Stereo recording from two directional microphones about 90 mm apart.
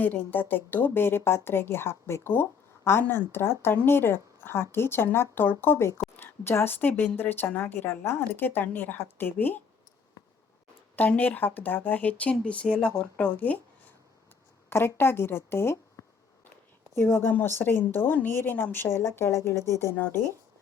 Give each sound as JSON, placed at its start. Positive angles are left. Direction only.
{"t": 0.0, "sound": "a woman's voice", "side_deg": 20}
{"t": 10.9, "sound": "speech", "side_deg": 20}
{"t": 14.7, "sound": "a woman's voice", "side_deg": 25}